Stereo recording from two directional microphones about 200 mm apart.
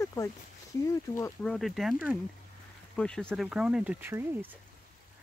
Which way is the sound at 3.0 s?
5° left (ahead or behind).